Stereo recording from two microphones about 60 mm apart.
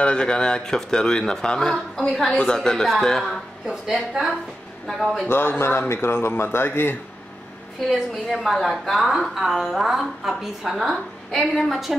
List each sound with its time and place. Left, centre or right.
0.0 s speech: centre
3.8 s a woman's voice: centre
5.3 s a man's voice: left
7.9 s a woman's voice: centre